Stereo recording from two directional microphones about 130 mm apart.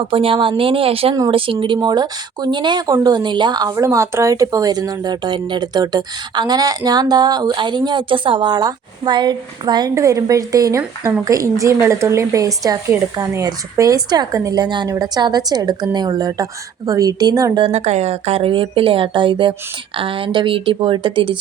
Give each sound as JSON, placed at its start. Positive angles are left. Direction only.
{"t": 0.0, "sound": "a woman's voice", "side_deg": -45}
{"t": 17.6, "sound": "speech", "side_deg": -55}